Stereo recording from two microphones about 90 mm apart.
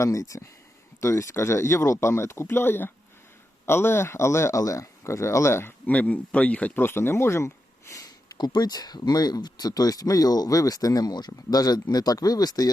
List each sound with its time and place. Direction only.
0.0 s speech: 35° left (ahead or behind)
5.9 s speech: 15° left (ahead or behind); by 12.7 s 45° left (ahead or behind)